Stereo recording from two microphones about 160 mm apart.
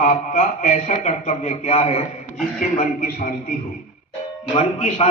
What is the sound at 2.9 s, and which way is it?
Speech, 70° left (ahead or behind).